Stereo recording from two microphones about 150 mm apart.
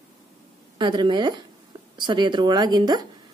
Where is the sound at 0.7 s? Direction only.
30° right (ahead or behind).